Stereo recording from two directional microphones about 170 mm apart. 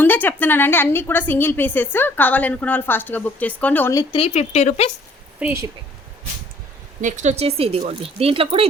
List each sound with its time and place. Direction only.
0.0 s a woman's voice: 10° left (ahead or behind)
4.1 s speech: 40° left (ahead or behind)
5.4 s speech: 5° right (ahead or behind)
7.0 s speech: 45° right (ahead or behind)